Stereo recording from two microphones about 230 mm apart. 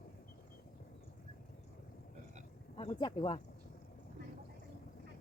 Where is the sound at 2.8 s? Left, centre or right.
Centre.